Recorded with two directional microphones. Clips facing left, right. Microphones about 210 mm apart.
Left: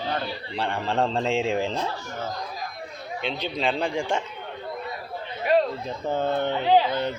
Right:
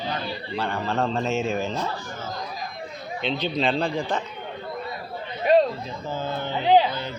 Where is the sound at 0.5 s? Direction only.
30° left (ahead or behind).